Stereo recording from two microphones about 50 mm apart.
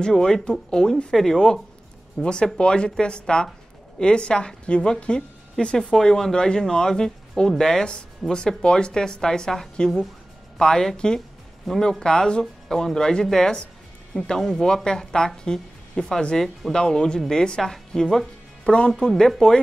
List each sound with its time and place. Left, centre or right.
0.0 s a woman's voice: centre
11.1 s music: centre
12.0 s speech: centre